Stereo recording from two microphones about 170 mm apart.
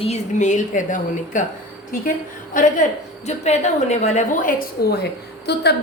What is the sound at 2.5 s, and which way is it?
A woman's voice, 50° left (ahead or behind).